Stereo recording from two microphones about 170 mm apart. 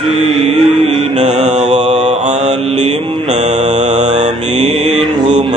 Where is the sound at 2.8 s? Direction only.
30° right (ahead or behind).